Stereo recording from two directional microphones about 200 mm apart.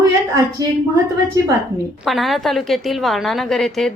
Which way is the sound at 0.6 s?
20° right (ahead or behind).